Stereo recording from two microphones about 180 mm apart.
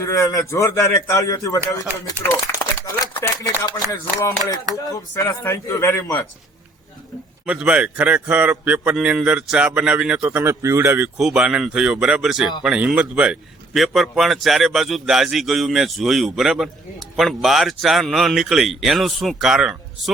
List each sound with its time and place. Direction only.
0.0 s a man's voice: 15° left (ahead or behind)
7.4 s a man's voice: 5° right (ahead or behind)